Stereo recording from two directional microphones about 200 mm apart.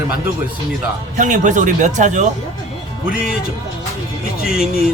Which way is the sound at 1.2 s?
40° right (ahead or behind).